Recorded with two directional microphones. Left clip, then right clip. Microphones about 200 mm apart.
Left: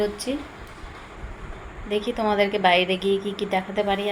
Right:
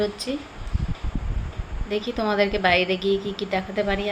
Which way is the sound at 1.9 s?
15° right (ahead or behind).